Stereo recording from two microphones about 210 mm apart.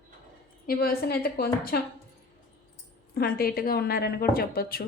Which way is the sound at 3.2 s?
45° left (ahead or behind).